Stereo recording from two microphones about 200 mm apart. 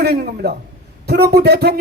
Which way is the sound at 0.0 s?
50° right (ahead or behind).